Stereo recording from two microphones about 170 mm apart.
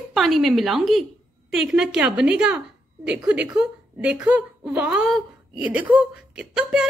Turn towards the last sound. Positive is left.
turn(degrees=-5)  # may be behind; listen again after turning